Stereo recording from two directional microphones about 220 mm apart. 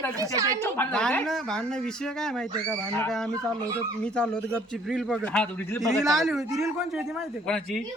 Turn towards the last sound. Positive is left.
turn(degrees=5)  # may be behind; listen again after turning